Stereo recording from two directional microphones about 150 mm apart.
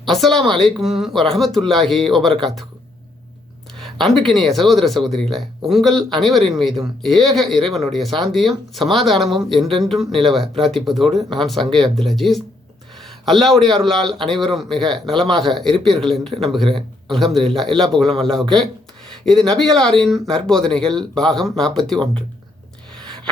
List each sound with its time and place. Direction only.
0.0 s speech: centre (ahead or behind)
3.8 s speech: centre (ahead or behind)
13.0 s a sound: centre (ahead or behind)
13.6 s speech: centre (ahead or behind)